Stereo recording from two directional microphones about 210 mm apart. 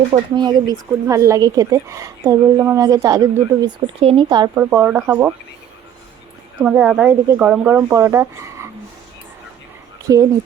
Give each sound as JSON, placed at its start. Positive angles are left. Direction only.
{"t": 0.1, "sound": "speech", "side_deg": -20}
{"t": 4.5, "sound": "speech", "side_deg": -10}
{"t": 6.6, "sound": "speech", "side_deg": -10}
{"t": 10.1, "sound": "speech", "side_deg": -15}